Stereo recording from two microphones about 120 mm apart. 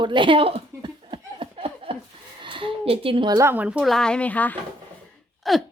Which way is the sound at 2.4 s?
45° right (ahead or behind).